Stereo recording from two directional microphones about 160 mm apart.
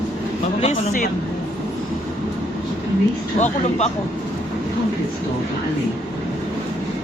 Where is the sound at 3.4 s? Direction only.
45° left (ahead or behind).